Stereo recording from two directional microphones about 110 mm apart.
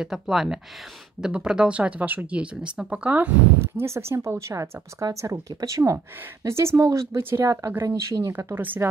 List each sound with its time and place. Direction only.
0.0 s speech: 5° right (ahead or behind); by 8.6 s 25° right (ahead or behind)